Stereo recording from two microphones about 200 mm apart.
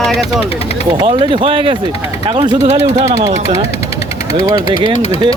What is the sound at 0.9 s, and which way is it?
Speech, 25° right (ahead or behind).